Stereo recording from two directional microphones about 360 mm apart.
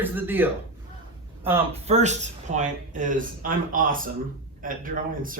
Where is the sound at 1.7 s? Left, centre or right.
Centre.